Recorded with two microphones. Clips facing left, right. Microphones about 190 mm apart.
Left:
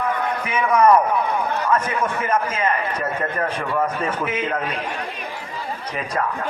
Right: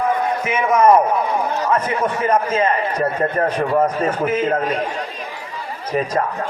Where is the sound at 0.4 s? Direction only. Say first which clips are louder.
Right 2 dB; 25° right (ahead or behind); by 4.8 s 40° right (ahead or behind).